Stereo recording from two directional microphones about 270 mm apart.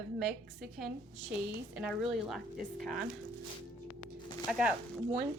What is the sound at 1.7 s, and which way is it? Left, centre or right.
Speech, centre.